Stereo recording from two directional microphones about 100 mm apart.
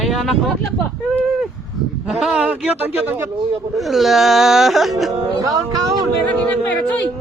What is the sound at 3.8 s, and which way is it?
Wail, centre (ahead or behind).